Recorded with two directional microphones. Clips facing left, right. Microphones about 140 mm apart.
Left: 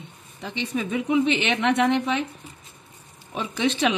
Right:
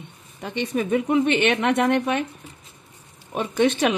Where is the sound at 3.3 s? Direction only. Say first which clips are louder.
Right 4 dB; 50° right (ahead or behind).